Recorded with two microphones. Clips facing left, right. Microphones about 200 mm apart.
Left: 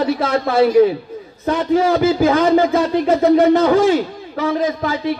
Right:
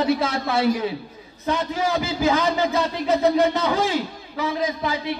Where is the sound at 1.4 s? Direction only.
50° left (ahead or behind).